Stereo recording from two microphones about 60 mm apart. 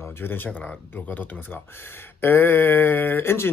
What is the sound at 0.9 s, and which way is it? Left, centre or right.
Speech, left.